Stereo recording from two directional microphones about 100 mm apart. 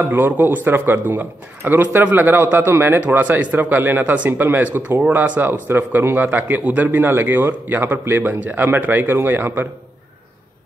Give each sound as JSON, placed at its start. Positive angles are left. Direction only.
{"t": 0.0, "sound": "a man's voice", "side_deg": -20}